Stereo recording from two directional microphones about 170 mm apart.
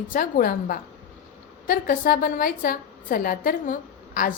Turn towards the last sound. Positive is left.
turn(degrees=55)  # may be behind; listen again after turning